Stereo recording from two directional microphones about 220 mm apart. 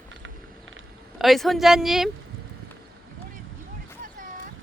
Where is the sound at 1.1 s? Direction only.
Centre (ahead or behind).